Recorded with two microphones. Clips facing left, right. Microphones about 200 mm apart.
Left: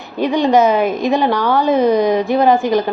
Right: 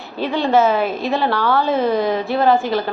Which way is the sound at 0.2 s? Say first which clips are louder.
Left 3 dB; 15° left (ahead or behind).